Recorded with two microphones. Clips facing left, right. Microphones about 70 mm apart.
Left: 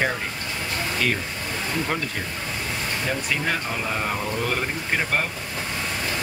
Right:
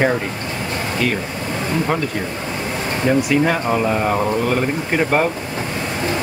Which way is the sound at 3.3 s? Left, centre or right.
Centre.